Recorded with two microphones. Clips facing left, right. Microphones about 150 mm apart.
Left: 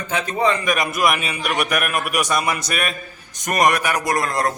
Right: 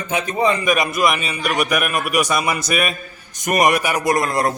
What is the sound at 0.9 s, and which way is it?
A man's voice, 5° left (ahead or behind).